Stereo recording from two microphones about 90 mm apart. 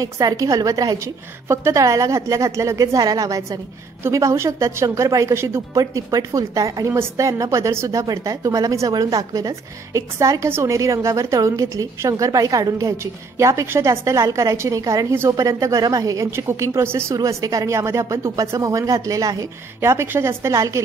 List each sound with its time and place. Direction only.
0.0 s a woman's voice: 45° right (ahead or behind)
5.9 s a woman's voice: 40° right (ahead or behind)
16.3 s a woman's voice: 30° right (ahead or behind)
19.8 s a woman's voice: 30° right (ahead or behind)